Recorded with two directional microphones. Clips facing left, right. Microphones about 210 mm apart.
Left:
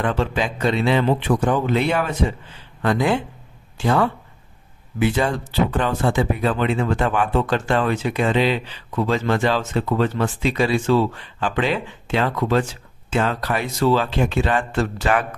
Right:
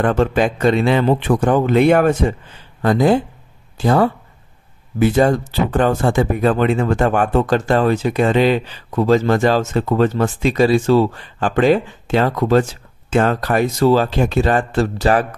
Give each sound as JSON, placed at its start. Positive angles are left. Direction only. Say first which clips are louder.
{"t": 0.0, "sound": "speech", "louder": "right 6 dB", "side_deg": -50}
{"t": 2.8, "sound": "speech", "louder": "right 5 dB", "side_deg": -40}